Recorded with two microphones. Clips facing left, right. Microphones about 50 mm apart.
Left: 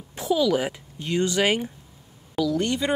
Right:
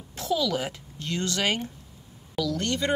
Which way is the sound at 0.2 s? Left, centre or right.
Centre.